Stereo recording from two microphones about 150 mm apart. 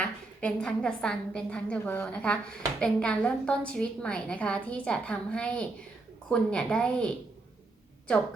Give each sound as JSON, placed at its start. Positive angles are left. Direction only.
{"t": 0.0, "sound": "a woman's voice", "side_deg": 5}